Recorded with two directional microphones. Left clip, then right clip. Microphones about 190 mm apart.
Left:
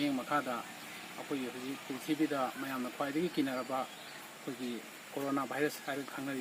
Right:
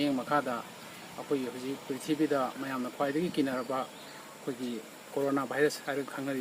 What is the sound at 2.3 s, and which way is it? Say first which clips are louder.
Speech: right 4 dB; 25° right (ahead or behind).